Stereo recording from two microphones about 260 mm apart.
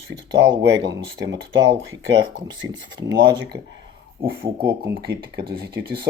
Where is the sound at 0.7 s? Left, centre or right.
Right.